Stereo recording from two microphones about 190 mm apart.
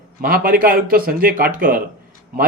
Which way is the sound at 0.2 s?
50° right (ahead or behind).